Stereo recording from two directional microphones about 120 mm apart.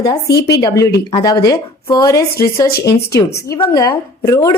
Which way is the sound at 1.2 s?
30° left (ahead or behind).